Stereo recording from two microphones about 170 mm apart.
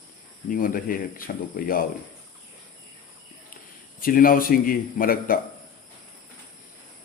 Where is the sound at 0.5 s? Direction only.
55° left (ahead or behind).